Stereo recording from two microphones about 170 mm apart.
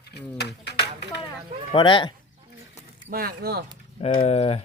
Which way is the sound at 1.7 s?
30° left (ahead or behind).